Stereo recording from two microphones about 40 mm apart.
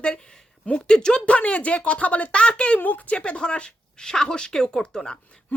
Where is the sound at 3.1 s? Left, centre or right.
Left.